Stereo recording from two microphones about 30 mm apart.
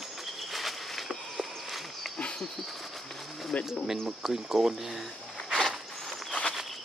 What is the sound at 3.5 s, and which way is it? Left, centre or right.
Speech, left.